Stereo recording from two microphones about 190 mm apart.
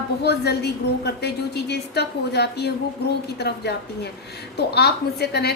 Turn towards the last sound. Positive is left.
turn(degrees=60)  # may be behind; listen again after turning